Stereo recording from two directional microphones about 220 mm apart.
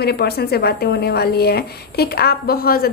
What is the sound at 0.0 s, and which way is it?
A woman's voice, 45° left (ahead or behind).